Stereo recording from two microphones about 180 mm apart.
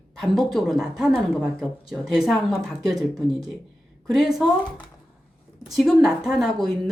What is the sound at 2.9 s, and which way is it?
Speech, 20° right (ahead or behind).